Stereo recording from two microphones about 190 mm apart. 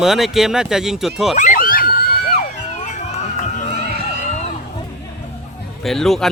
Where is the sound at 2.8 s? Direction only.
40° left (ahead or behind).